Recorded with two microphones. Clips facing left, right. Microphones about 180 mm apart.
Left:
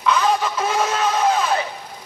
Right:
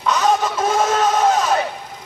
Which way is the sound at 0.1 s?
45° right (ahead or behind).